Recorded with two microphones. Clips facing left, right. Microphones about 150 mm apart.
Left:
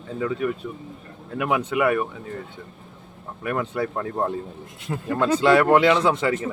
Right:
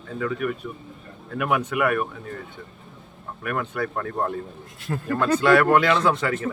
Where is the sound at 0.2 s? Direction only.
25° left (ahead or behind).